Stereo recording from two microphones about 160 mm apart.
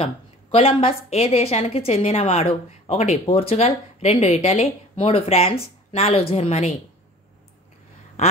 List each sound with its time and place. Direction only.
0.0 s a woman's voice: 35° left (ahead or behind)